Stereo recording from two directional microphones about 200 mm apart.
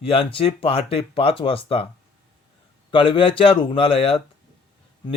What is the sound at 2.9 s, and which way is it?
Speech, 25° left (ahead or behind).